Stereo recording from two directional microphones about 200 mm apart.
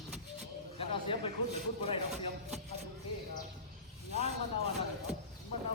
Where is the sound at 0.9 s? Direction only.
25° left (ahead or behind).